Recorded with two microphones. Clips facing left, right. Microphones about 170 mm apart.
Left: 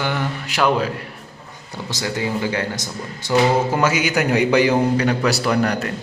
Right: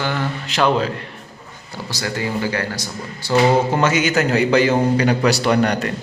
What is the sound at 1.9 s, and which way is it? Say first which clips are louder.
Speech: even; 20° left (ahead or behind).